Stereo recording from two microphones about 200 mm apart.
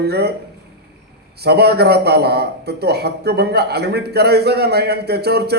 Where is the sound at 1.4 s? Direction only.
55° right (ahead or behind).